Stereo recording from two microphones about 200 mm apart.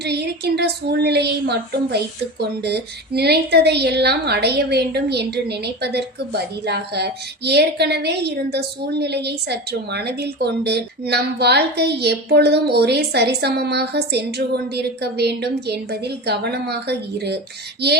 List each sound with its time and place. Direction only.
0.0 s a woman's voice: 55° right (ahead or behind)